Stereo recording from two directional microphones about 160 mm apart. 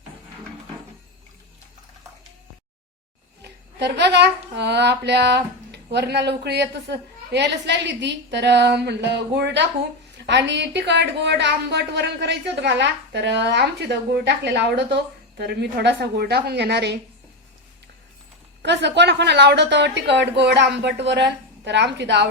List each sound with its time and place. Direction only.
3.4 s a sound: 90° right
5.7 s a woman's voice: 90° right
18.6 s a woman's voice: 90° right